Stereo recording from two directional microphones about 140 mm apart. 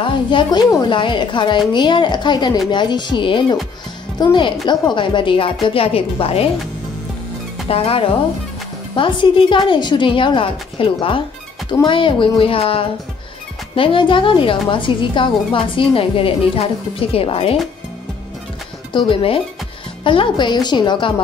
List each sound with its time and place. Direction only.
0.0 s a woman's voice: 35° left (ahead or behind)
7.6 s a woman's voice: 45° left (ahead or behind)
18.9 s a woman's voice: 40° left (ahead or behind)